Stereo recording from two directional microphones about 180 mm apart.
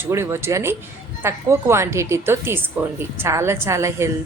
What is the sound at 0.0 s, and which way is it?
A woman's voice, 15° right (ahead or behind).